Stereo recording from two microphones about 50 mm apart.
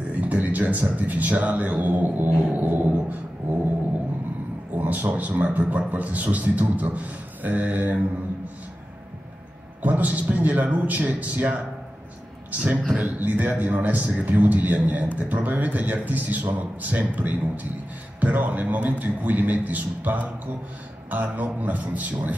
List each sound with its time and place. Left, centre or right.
0.1 s a man's voice: right
3.4 s a sound: right
4.7 s a man's voice: right
9.8 s a man's voice: right
12.4 s a sound: right
13.2 s a man's voice: right